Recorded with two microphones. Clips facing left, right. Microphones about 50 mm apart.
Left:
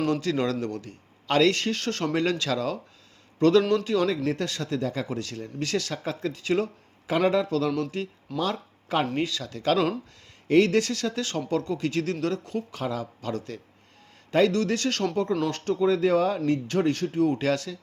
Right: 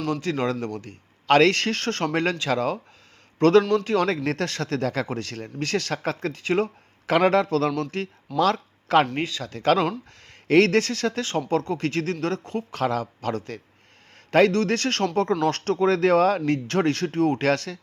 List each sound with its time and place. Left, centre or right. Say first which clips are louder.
0.1 s speech: even; right
0.3 s a man's voice: right 1 dB; right
0.6 s speech: right 1 dB; right
1.3 s speech: right 4 dB; right
3.3 s a man's voice: right 3 dB; right
5.0 s speech: right 1 dB; right
7.1 s speech: right 4 dB; right
8.4 s speech: right 7 dB; right
9.1 s speech: even; right